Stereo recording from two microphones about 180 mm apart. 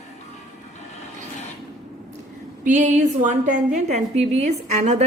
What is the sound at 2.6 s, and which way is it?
A woman's voice, 45° right (ahead or behind).